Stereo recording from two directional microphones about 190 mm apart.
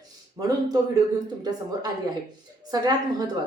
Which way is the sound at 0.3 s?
20° right (ahead or behind).